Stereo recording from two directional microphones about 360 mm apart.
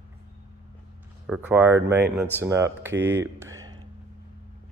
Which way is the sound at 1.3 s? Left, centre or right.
Centre.